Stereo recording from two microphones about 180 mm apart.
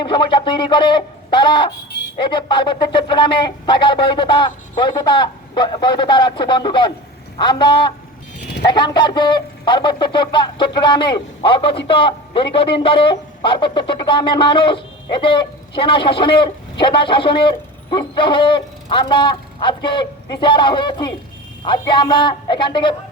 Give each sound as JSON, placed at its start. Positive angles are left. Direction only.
{"t": 0.0, "sound": "speech", "side_deg": 25}